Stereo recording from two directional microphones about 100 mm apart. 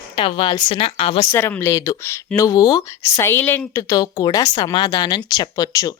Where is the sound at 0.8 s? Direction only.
80° left.